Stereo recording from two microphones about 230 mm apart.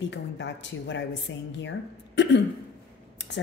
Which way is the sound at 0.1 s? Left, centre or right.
Left.